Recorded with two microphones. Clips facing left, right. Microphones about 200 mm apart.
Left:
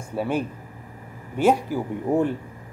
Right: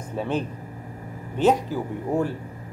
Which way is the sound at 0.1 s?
10° left (ahead or behind).